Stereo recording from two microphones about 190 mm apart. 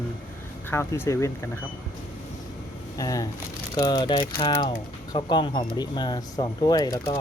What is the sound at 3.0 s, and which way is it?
Speech, 20° left (ahead or behind).